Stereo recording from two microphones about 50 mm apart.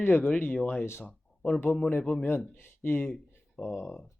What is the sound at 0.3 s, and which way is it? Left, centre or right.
Speech, left.